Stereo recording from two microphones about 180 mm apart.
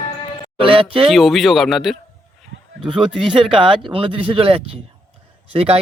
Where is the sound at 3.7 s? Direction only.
25° right (ahead or behind).